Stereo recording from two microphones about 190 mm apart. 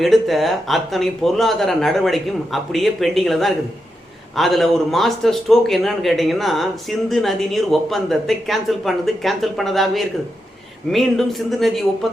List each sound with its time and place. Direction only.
0.0 s a man's voice: centre (ahead or behind)